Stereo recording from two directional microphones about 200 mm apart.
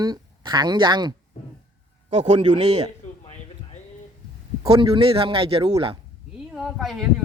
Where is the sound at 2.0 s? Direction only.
35° right (ahead or behind).